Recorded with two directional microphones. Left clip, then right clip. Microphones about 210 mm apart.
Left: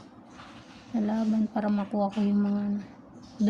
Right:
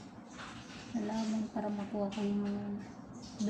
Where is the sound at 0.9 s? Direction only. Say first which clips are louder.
Left 8 dB; 65° left (ahead or behind).